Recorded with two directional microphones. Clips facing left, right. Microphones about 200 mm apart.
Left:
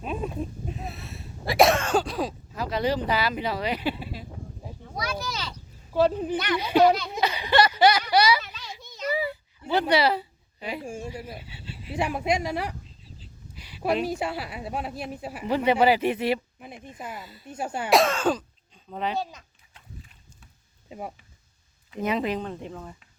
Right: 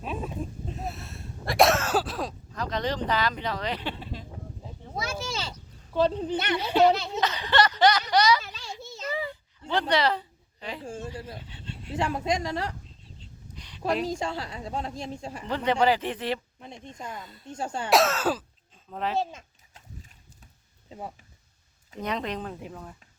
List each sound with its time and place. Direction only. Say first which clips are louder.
0.8 s throat clearing: right 1 dB; centre (ahead or behind)
4.9 s a sound: left 1 dB; 25° right (ahead or behind)
5.9 s speech: left 2 dB; 10° left (ahead or behind)
6.3 s speech: left 1 dB; 25° right (ahead or behind)
6.6 s speech: left 2 dB; 10° left (ahead or behind)
8.5 s a sound: right 2 dB; 25° right (ahead or behind)
9.0 s a woman's voice: left 5 dB; 10° left (ahead or behind)
19.2 s speech: right 3 dB; 25° right (ahead or behind)
19.7 s horse: left 1 dB; 40° right (ahead or behind)
22.0 s speech: left 4 dB; 5° left (ahead or behind)